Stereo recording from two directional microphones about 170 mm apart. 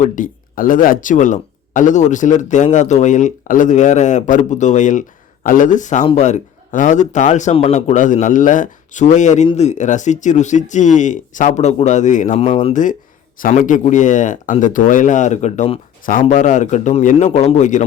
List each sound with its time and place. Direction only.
0.0 s speech: 50° left (ahead or behind)